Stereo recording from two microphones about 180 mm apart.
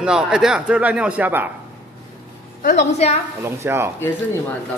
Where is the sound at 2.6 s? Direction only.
35° left (ahead or behind).